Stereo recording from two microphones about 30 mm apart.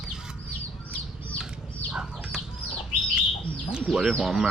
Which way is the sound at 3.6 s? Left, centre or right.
Right.